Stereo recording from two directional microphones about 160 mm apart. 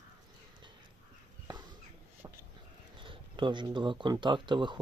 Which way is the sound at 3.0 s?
30° right (ahead or behind).